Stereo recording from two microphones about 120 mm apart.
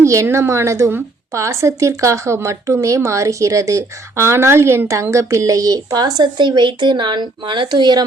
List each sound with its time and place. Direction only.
0.0 s a woman's voice: 25° right (ahead or behind)